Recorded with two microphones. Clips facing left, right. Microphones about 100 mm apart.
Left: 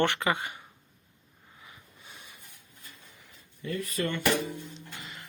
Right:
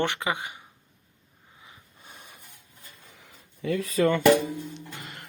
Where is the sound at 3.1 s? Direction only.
90° right.